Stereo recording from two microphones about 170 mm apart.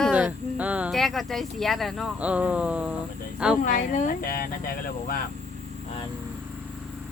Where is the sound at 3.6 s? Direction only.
45° left (ahead or behind).